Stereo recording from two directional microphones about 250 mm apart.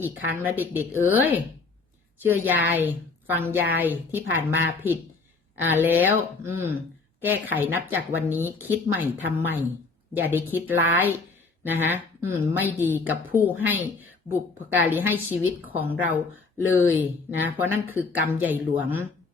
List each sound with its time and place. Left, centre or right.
0.3 s a woman's voice: centre